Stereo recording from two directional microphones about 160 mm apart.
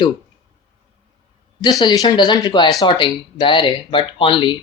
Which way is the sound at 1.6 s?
25° left (ahead or behind).